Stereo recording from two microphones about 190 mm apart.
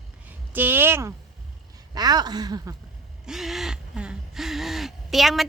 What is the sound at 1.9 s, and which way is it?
Speech, 20° right (ahead or behind).